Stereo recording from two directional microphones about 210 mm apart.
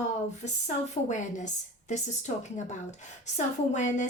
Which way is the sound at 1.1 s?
35° left (ahead or behind).